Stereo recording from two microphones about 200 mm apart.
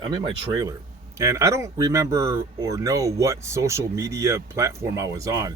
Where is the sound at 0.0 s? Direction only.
25° right (ahead or behind).